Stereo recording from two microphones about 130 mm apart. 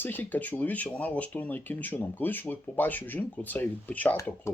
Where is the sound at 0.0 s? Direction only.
15° left (ahead or behind).